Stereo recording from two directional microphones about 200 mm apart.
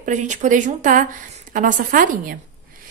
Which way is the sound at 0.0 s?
40° right (ahead or behind).